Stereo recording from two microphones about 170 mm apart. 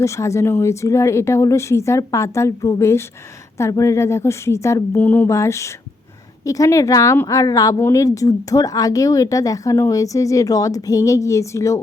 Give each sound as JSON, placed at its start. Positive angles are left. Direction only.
{"t": 0.0, "sound": "speech", "side_deg": 15}